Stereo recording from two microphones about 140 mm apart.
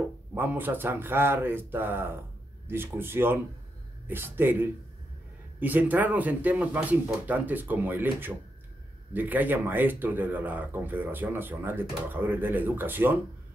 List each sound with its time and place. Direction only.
0.3 s speech: 15° right (ahead or behind)